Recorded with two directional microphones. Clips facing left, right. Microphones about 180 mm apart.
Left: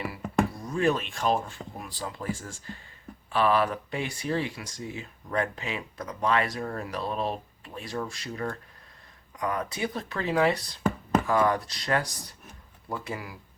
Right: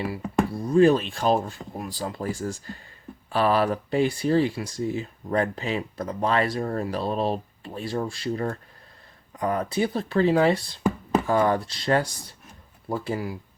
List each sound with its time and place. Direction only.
0.6 s speech: 35° right (ahead or behind)